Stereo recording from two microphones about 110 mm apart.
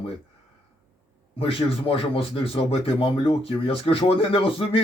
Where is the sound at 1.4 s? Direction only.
55° left (ahead or behind).